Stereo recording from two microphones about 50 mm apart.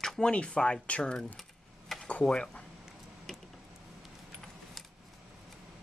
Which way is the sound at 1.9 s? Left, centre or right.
Centre.